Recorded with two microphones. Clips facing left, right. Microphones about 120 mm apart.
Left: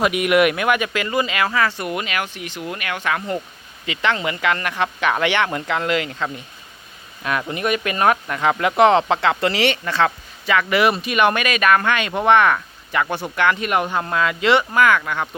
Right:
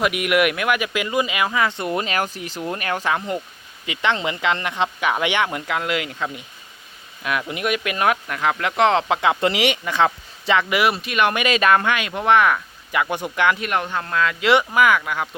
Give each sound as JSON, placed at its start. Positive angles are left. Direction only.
{"t": 0.0, "sound": "speech", "side_deg": 0}
{"t": 0.9, "sound": "speech", "side_deg": -10}
{"t": 3.8, "sound": "speech", "side_deg": -20}
{"t": 7.5, "sound": "speech", "side_deg": -5}
{"t": 10.8, "sound": "speech", "side_deg": 0}
{"t": 11.3, "sound": "speech", "side_deg": -25}
{"t": 11.8, "sound": "speech", "side_deg": -10}
{"t": 13.6, "sound": "speech", "side_deg": 10}
{"t": 14.4, "sound": "speech", "side_deg": -10}